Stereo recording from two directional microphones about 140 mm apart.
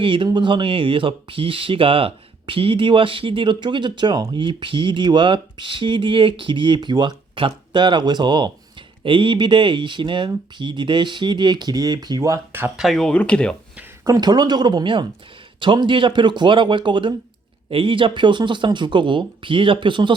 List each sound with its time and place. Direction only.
0.0 s speech: 40° right (ahead or behind); by 12.8 s 15° right (ahead or behind)
12.8 s speech: centre (ahead or behind)
14.0 s speech: 25° right (ahead or behind)